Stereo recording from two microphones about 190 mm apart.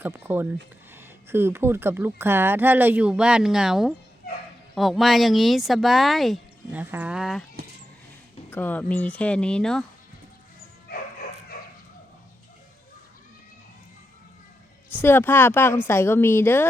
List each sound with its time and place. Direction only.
0.0 s speech: 10° right (ahead or behind)
8.4 s a woman's voice: 10° left (ahead or behind)
10.9 s dog: 55° left (ahead or behind)
15.0 s a woman's voice: 10° left (ahead or behind)